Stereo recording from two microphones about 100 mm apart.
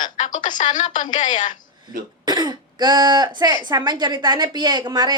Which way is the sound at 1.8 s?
45° right (ahead or behind).